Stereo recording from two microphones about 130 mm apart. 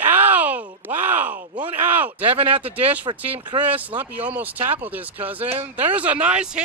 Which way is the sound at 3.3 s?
40° right (ahead or behind).